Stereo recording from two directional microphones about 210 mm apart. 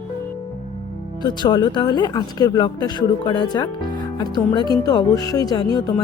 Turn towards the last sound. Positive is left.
turn(degrees=20)  # may be behind; listen again after turning